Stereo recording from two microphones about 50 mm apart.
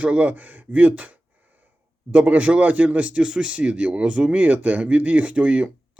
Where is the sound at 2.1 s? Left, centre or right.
Right.